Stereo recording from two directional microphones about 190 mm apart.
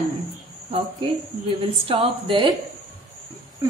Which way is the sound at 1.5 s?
30° right (ahead or behind).